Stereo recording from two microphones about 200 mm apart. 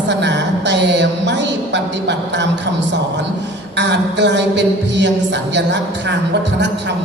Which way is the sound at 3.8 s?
60° right (ahead or behind).